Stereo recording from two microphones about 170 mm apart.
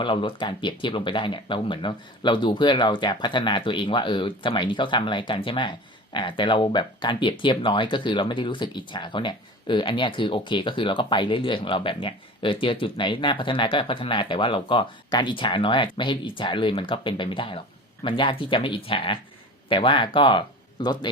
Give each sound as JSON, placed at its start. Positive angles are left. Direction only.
{"t": 0.0, "sound": "speech", "side_deg": 30}